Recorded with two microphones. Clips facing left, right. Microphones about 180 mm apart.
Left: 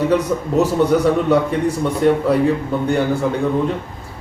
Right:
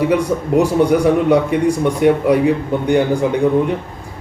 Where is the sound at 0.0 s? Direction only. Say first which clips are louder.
Right 1 dB; 10° right (ahead or behind).